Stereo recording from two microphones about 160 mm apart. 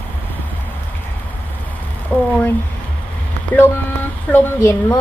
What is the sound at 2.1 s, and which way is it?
Speech, 10° left (ahead or behind).